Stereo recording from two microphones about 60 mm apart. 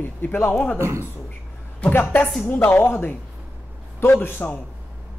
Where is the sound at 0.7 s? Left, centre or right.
Right.